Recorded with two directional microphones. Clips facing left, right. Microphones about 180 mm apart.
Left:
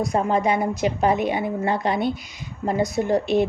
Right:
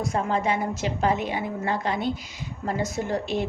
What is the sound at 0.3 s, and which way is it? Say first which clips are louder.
A woman's voice: left 4 dB; 15° left (ahead or behind).